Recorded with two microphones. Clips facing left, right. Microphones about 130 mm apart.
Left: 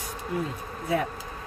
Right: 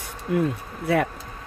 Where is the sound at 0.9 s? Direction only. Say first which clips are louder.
Right 5 dB; 70° right (ahead or behind).